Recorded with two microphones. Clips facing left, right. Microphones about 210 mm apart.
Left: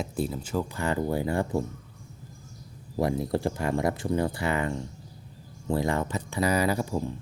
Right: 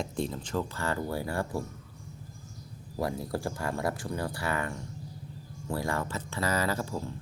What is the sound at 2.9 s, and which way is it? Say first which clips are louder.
Speech: left 6 dB; 20° left (ahead or behind).